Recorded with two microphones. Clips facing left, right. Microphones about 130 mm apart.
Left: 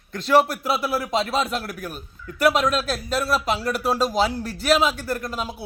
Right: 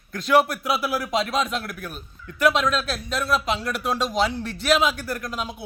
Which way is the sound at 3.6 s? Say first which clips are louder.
Left 3 dB; 35° left (ahead or behind).